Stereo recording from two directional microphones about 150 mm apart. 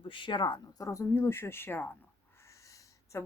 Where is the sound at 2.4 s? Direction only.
20° left (ahead or behind).